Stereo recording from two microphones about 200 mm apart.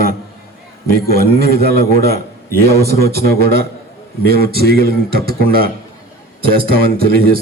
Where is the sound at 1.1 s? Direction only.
50° right (ahead or behind).